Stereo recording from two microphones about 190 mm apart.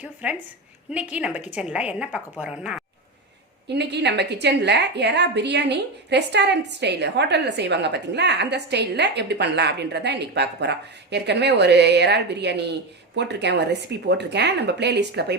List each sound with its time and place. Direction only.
0.0 s a woman's voice: 5° right (ahead or behind)
3.7 s a woman's voice: 65° right (ahead or behind)